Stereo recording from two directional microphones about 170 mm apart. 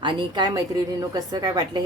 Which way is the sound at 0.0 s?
25° right (ahead or behind).